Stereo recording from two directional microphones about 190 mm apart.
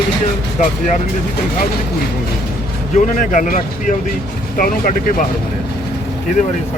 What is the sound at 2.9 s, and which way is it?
Speech, 45° left (ahead or behind).